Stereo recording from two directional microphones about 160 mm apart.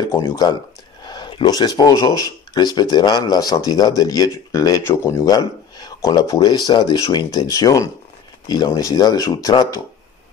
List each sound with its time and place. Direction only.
0.2 s speech: 25° left (ahead or behind)